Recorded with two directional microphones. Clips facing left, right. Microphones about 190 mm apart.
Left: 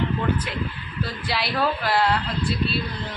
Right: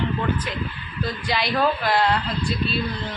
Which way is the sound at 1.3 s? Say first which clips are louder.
Right 3 dB; 5° left (ahead or behind).